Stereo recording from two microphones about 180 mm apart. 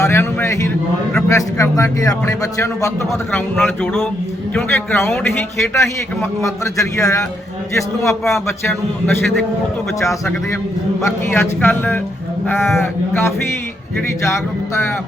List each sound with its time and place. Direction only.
0.0 s a man's voice: 15° left (ahead or behind)
8.3 s a man's voice: 15° left (ahead or behind)
11.0 s a man's voice: 15° left (ahead or behind)